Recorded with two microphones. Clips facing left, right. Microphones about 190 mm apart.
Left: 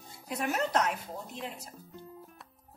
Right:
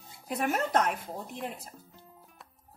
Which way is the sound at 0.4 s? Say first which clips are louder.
Right 2 dB; 50° right (ahead or behind).